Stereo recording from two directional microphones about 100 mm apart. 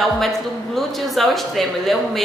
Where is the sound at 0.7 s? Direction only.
Centre (ahead or behind).